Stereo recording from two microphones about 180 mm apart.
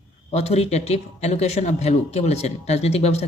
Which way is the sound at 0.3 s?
35° left (ahead or behind).